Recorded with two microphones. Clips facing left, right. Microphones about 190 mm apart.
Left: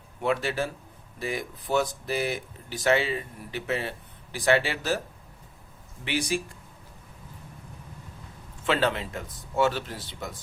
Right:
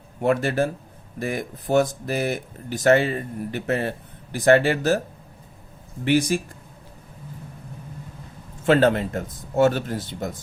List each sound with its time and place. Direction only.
0.2 s speech: 50° right (ahead or behind)
6.1 s speech: 45° right (ahead or behind)
8.6 s speech: 50° right (ahead or behind)